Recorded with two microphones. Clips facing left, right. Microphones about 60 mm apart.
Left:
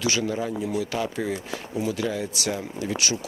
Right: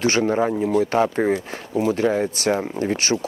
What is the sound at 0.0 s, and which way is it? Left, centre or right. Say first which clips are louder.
Speech: right 7 dB; right.